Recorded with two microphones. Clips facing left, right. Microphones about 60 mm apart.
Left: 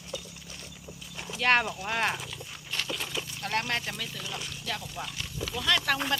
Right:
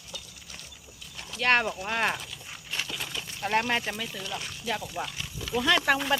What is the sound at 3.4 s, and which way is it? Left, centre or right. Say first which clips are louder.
Speech: right 5 dB; centre.